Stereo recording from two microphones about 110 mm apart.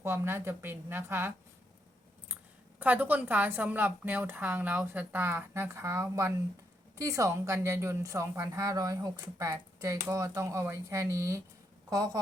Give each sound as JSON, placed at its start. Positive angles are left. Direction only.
{"t": 0.0, "sound": "a woman's voice", "side_deg": -20}
{"t": 2.7, "sound": "a woman's voice", "side_deg": -15}